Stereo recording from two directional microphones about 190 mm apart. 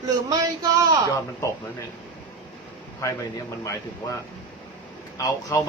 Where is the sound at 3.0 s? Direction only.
15° left (ahead or behind).